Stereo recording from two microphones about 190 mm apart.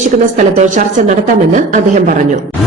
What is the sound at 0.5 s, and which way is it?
Speech, 40° right (ahead or behind).